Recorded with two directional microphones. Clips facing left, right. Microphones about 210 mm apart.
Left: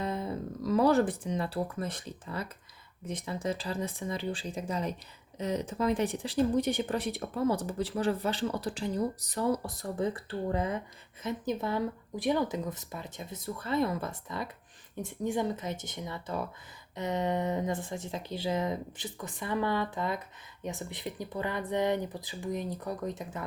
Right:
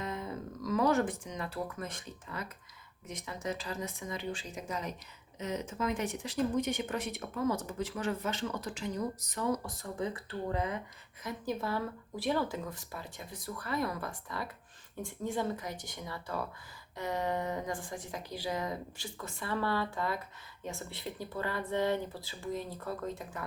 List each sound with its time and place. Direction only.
0.0 s speech: 35° left (ahead or behind)